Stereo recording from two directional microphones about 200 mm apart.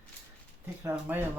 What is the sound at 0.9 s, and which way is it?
Speech, 10° right (ahead or behind).